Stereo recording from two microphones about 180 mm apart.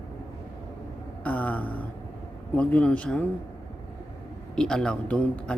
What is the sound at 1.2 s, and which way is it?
Speech, 10° left (ahead or behind).